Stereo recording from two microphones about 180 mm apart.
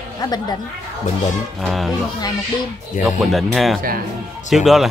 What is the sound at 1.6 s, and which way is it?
Speech, centre (ahead or behind).